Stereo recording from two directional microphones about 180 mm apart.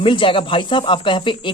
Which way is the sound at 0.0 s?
30° left (ahead or behind).